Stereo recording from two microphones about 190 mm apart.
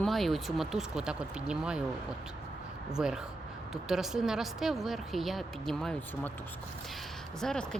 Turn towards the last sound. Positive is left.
turn(degrees=5)  # may be behind; listen again after turning